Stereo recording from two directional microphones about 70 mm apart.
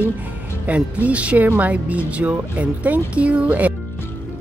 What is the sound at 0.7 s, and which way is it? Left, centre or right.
Speech, centre.